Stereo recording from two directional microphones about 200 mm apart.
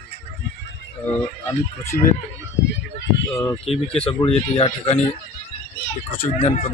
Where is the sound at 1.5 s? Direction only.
15° left (ahead or behind).